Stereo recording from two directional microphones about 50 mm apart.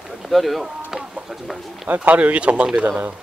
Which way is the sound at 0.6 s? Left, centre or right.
Centre.